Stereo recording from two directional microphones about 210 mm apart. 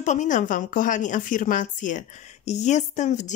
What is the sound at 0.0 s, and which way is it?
A woman's voice, 35° left (ahead or behind).